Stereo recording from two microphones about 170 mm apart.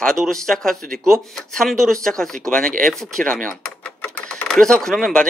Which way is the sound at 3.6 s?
5° left (ahead or behind).